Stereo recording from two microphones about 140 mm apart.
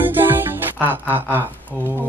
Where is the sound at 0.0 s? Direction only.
15° right (ahead or behind).